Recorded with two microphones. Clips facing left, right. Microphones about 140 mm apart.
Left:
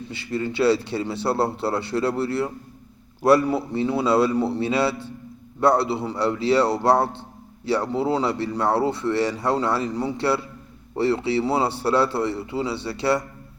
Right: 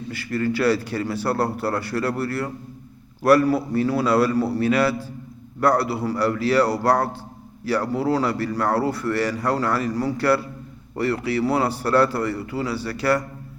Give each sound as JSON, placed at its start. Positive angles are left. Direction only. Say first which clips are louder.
{"t": 0.1, "sound": "speech", "louder": "right 3 dB", "side_deg": 25}